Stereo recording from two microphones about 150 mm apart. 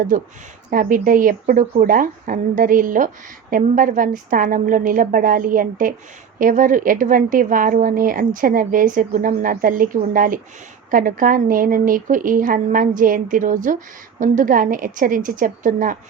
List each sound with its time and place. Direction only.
0.1 s speech: 60° right (ahead or behind)